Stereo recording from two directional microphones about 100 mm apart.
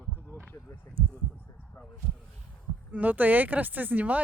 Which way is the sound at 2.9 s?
15° right (ahead or behind).